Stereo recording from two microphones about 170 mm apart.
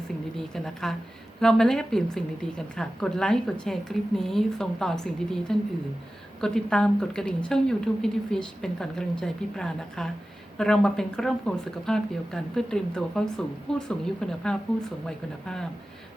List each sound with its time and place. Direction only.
0.3 s a woman's voice: centre (ahead or behind)